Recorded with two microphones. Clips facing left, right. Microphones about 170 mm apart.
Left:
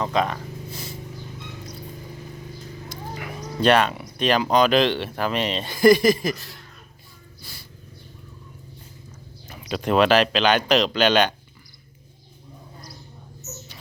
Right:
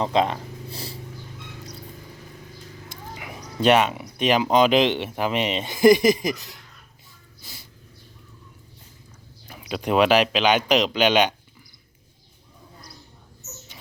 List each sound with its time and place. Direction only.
0.0 s speech: 25° right (ahead or behind)
3.2 s speech: 15° right (ahead or behind)
7.4 s music: 20° right (ahead or behind)
9.5 s speech: 5° right (ahead or behind)